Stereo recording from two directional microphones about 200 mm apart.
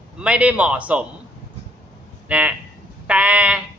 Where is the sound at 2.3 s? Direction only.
5° right (ahead or behind).